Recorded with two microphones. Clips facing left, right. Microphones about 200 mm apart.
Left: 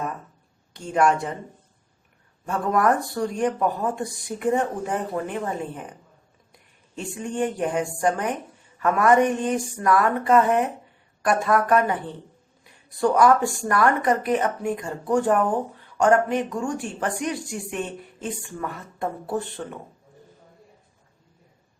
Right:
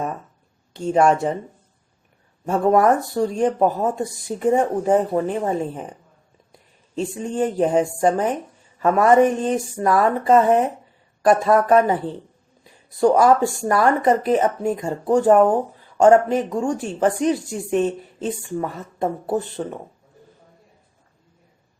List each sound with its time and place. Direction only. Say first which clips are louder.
0.7 s speech: right 4 dB; 30° right (ahead or behind)
2.5 s speech: right 5 dB; 30° right (ahead or behind)
6.9 s speech: right 5 dB; 35° right (ahead or behind)
13.1 s speech: right 2 dB; 25° right (ahead or behind)